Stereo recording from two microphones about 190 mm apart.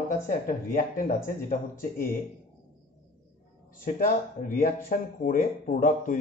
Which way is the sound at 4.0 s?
45° left (ahead or behind).